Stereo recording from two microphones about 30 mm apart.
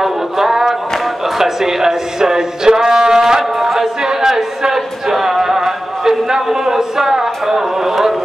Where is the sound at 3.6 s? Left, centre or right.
Centre.